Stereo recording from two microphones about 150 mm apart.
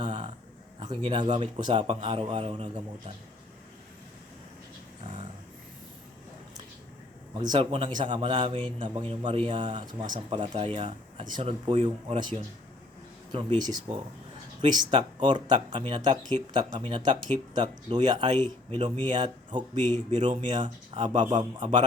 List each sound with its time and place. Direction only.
0.0 s a sound: 30° right (ahead or behind)
0.8 s a man's voice: 35° right (ahead or behind)
7.3 s a man's voice: 35° right (ahead or behind)
13.3 s a man's voice: 30° right (ahead or behind)